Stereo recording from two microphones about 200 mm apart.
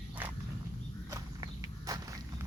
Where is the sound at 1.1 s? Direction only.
15° right (ahead or behind).